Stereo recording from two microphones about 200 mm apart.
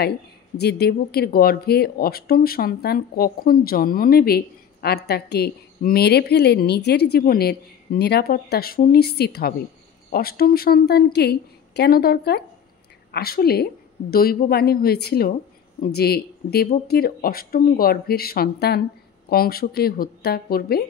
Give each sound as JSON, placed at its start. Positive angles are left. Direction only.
{"t": 0.6, "sound": "a woman's voice", "side_deg": 55}